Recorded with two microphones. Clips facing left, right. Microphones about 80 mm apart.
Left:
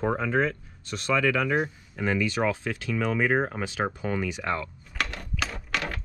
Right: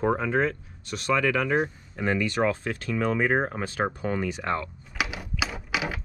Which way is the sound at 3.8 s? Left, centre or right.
Right.